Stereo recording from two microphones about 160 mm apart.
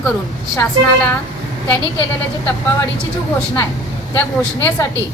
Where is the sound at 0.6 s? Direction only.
10° left (ahead or behind).